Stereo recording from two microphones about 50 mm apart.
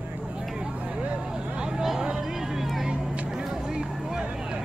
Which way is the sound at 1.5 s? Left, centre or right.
Centre.